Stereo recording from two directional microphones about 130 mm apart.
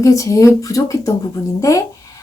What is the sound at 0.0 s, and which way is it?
A woman's voice, 25° left (ahead or behind).